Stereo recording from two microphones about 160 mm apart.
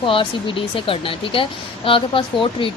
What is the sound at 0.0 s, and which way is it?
Speech, 30° left (ahead or behind).